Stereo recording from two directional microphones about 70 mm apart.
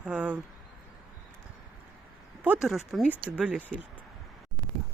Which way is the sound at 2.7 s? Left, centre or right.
Centre.